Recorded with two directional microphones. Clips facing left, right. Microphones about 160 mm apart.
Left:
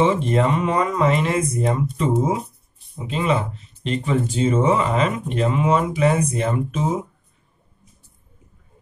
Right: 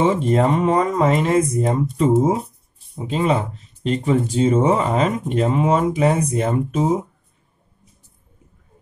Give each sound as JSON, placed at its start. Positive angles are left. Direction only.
{"t": 0.0, "sound": "speech", "side_deg": -35}
{"t": 3.1, "sound": "speech", "side_deg": -35}